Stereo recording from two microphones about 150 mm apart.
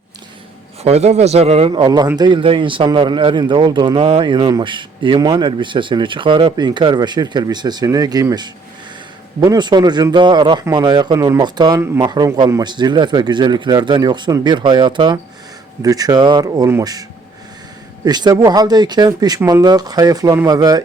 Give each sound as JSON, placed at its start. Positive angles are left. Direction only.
{"t": 0.8, "sound": "a man's voice", "side_deg": -45}
{"t": 1.7, "sound": "a man's voice", "side_deg": -30}